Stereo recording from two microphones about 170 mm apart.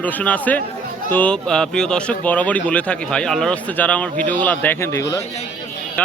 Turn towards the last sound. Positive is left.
turn(degrees=15)  # may be behind; listen again after turning